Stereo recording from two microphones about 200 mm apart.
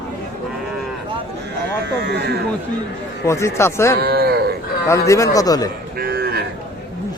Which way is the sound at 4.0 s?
50° right (ahead or behind).